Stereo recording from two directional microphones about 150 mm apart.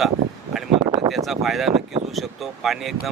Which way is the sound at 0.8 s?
35° right (ahead or behind).